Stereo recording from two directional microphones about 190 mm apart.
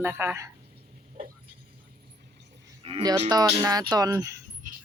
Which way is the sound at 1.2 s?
45° right (ahead or behind).